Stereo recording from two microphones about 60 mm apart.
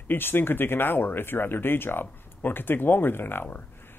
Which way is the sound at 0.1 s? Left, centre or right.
Left.